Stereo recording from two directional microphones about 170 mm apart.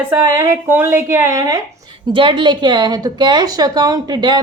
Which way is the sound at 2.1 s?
30° right (ahead or behind).